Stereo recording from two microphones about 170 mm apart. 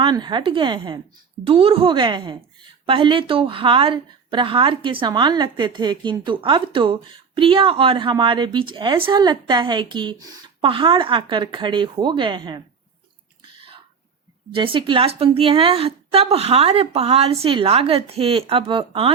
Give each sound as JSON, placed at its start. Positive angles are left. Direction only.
{"t": 0.0, "sound": "a woman's voice", "side_deg": -25}
{"t": 13.4, "sound": "a sound", "side_deg": -30}
{"t": 14.5, "sound": "a woman's voice", "side_deg": -30}